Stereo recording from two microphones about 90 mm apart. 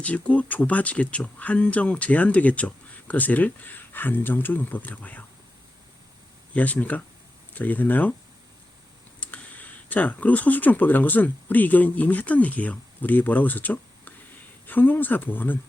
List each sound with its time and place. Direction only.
0.0 s speech: 15° left (ahead or behind)
6.5 s speech: 15° left (ahead or behind)
9.2 s speech: 20° left (ahead or behind)